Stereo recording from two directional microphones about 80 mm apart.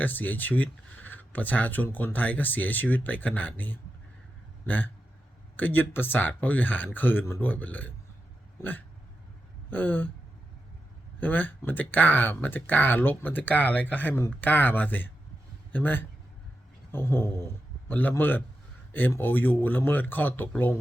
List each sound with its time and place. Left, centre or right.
0.0 s speech: left
9.6 s speech: left
11.2 s a man's voice: left